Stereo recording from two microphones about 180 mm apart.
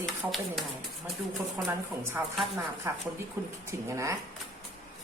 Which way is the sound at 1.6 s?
15° right (ahead or behind).